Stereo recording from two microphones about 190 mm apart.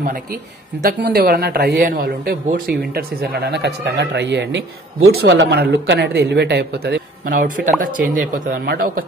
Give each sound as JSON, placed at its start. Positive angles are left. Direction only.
{"t": 0.8, "sound": "speech", "side_deg": -55}